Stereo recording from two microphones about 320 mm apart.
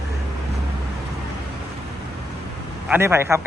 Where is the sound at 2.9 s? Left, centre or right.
Centre.